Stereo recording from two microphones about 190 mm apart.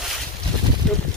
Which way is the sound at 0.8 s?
5° left (ahead or behind).